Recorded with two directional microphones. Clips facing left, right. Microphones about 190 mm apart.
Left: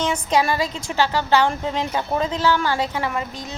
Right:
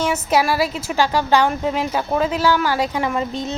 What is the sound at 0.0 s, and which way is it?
A woman's voice, 5° right (ahead or behind).